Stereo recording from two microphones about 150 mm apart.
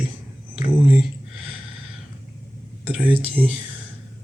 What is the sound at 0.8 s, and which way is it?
Speech, 5° right (ahead or behind).